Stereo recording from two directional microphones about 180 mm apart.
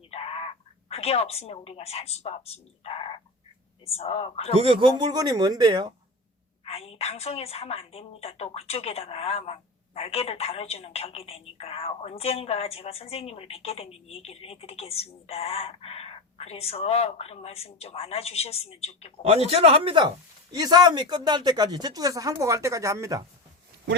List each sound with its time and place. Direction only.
0.1 s a woman's voice: 35° left (ahead or behind)
4.5 s speech: 30° right (ahead or behind)
6.7 s a woman's voice: 35° left (ahead or behind)
19.5 s speech: 30° right (ahead or behind)